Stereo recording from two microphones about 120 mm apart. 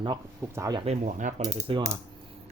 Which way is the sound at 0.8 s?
75° right (ahead or behind).